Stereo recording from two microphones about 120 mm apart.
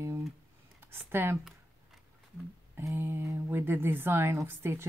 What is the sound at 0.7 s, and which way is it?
Speech, 20° right (ahead or behind).